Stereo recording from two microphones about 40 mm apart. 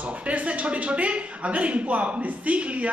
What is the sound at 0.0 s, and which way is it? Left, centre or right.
Speech, right.